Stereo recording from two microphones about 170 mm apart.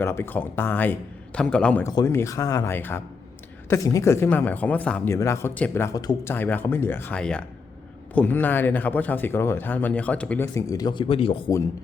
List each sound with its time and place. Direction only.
0.0 s speech: 15° left (ahead or behind)
1.8 s speech: 20° left (ahead or behind)
6.3 s speech: 10° left (ahead or behind); by 11.5 s 35° left (ahead or behind)